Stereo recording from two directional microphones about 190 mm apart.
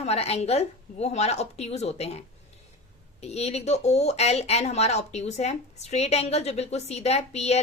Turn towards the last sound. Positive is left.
turn(degrees=35)  # may be behind; listen again after turning